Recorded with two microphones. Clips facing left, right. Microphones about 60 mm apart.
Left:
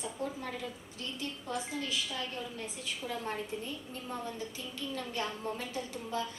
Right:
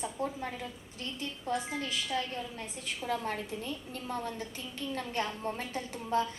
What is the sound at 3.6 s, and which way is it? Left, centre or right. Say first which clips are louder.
A woman's voice: right 2 dB; right.